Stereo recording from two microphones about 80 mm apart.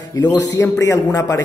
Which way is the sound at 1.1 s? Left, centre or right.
Left.